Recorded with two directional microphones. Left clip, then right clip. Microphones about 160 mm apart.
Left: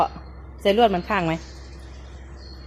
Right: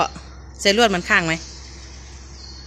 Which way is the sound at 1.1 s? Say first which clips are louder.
Right 5 dB; 5° right (ahead or behind).